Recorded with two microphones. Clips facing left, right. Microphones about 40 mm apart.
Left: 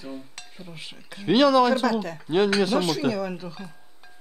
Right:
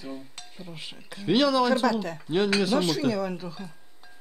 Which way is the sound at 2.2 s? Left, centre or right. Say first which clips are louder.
Left 4 dB; centre.